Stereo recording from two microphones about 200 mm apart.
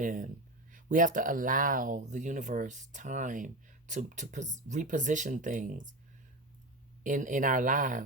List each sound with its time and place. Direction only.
0.0 s speech: 40° right (ahead or behind)
7.0 s speech: 40° right (ahead or behind)